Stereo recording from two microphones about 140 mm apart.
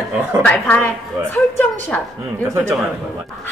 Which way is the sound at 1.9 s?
10° left (ahead or behind).